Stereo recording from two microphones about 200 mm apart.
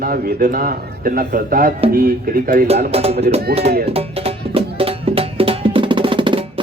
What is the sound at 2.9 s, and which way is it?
Speech, 30° right (ahead or behind).